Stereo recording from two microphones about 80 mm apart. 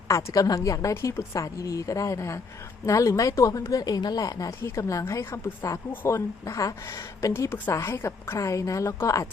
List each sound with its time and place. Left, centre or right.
0.1 s a woman's voice: left